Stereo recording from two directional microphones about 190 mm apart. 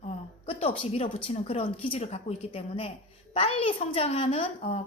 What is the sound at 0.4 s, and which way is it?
A woman's voice, 30° left (ahead or behind).